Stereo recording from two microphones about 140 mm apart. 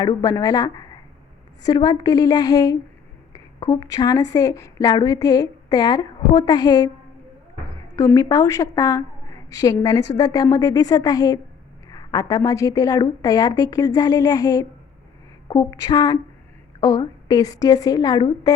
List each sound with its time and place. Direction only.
0.0 s a woman's voice: 30° left (ahead or behind)
3.8 s a woman's voice: 25° left (ahead or behind)
7.9 s a woman's voice: 25° left (ahead or behind)